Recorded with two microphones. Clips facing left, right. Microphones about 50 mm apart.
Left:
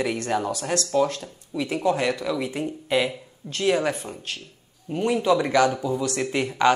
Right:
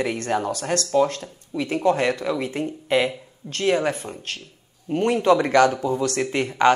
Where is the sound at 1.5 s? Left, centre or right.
Right.